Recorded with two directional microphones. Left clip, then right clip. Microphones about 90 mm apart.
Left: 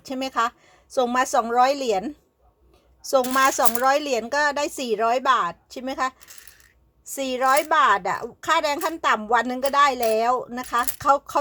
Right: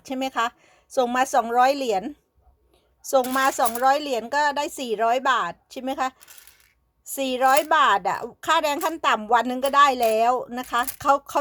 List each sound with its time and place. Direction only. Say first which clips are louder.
0.0 s a woman's voice: left 1 dB; 30° right (ahead or behind)